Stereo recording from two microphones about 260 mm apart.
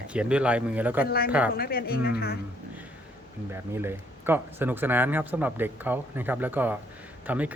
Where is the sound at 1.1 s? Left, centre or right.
Left.